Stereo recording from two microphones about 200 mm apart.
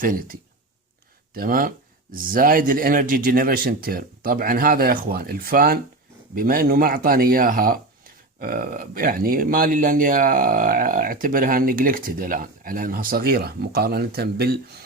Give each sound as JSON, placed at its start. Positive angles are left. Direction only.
{"t": 0.0, "sound": "speech", "side_deg": -45}
{"t": 1.4, "sound": "speech", "side_deg": -45}